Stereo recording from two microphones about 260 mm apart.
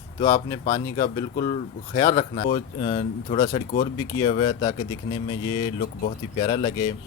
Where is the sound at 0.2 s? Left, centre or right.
Centre.